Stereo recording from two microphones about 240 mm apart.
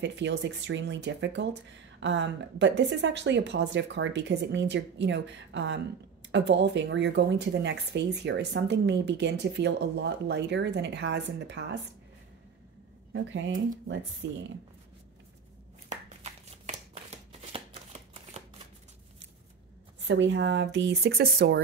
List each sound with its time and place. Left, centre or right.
0.0 s speech: right
13.1 s speech: right
16.4 s shuffling cards: right
20.0 s speech: right